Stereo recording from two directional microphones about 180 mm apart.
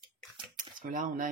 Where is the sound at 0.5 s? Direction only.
45° right (ahead or behind).